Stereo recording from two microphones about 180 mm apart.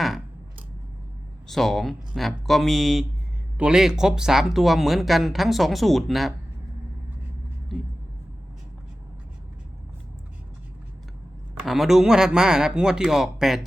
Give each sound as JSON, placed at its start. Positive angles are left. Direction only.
{"t": 1.5, "sound": "speech", "side_deg": 0}
{"t": 11.6, "sound": "speech", "side_deg": 0}